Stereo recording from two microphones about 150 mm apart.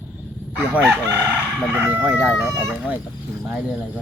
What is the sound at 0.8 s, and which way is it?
Crowing, 15° right (ahead or behind).